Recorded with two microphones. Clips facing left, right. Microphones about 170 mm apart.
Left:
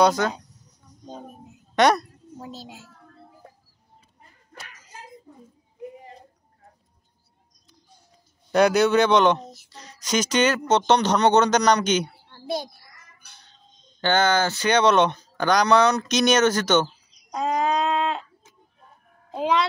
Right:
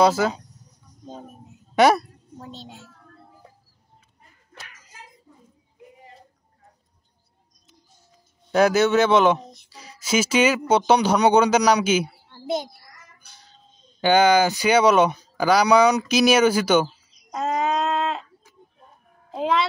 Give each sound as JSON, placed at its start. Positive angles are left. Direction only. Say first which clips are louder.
{"t": 0.0, "sound": "a child's voice", "louder": "right 1 dB", "side_deg": -5}
{"t": 1.0, "sound": "a sound", "louder": "even", "side_deg": -5}
{"t": 2.4, "sound": "a child's voice", "louder": "left 1 dB", "side_deg": 5}
{"t": 3.4, "sound": "bird", "louder": "left 2 dB", "side_deg": 50}
{"t": 8.5, "sound": "speech", "louder": "even", "side_deg": 0}
{"t": 13.7, "sound": "speech", "louder": "right 4 dB", "side_deg": -10}
{"t": 19.3, "sound": "a sound", "louder": "even", "side_deg": 0}